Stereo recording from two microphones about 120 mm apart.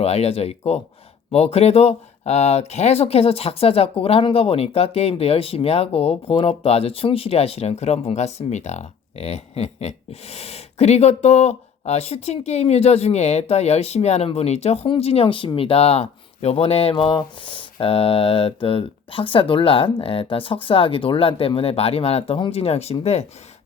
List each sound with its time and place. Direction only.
0.0 s speech: 60° left (ahead or behind)